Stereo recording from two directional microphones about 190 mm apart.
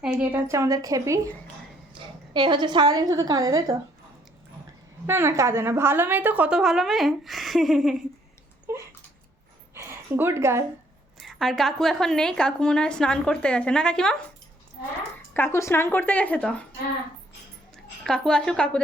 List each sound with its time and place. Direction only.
0.0 s a woman's voice: 5° right (ahead or behind)
2.3 s a woman's voice: 25° right (ahead or behind)
5.0 s a woman's voice: 15° right (ahead or behind)
8.7 s a sound: 15° right (ahead or behind)
11.3 s a woman's voice: centre (ahead or behind)
15.3 s speech: 10° left (ahead or behind)
18.0 s a woman's voice: 5° left (ahead or behind)